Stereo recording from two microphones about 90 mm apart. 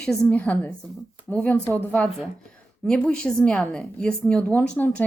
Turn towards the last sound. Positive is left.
turn(degrees=15)  # may be behind; listen again after turning